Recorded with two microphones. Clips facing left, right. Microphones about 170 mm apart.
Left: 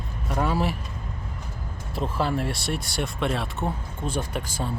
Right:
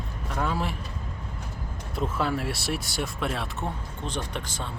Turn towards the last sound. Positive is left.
turn(degrees=10)  # may be behind; listen again after turning